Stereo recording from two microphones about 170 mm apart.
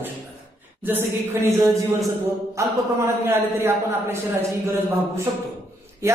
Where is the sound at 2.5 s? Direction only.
15° right (ahead or behind).